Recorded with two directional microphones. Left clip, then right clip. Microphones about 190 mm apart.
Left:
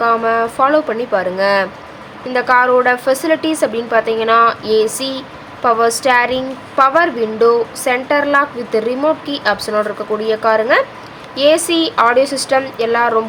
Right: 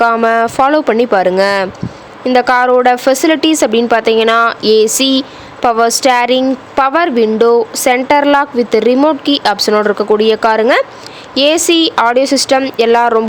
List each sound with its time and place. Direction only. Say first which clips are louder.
0.0 s a woman's voice: right 4 dB; 45° right (ahead or behind)